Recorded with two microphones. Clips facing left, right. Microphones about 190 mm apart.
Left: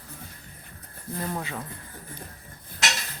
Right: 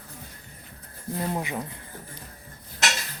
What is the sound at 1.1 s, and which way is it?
Speech, 20° right (ahead or behind).